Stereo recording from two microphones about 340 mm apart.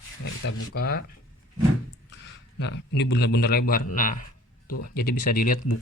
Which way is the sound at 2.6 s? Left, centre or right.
Left.